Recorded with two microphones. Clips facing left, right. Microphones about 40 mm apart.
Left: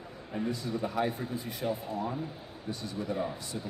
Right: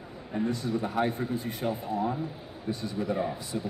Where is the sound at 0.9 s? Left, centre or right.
Right.